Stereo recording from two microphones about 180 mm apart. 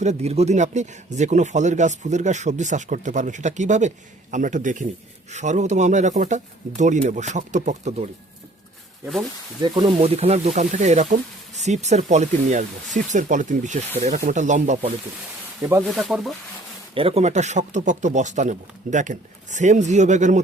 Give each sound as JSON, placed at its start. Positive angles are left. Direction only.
{"t": 0.0, "sound": "speech", "side_deg": -40}
{"t": 9.6, "sound": "speech", "side_deg": -25}
{"t": 15.8, "sound": "speech", "side_deg": 0}
{"t": 16.9, "sound": "speech", "side_deg": -30}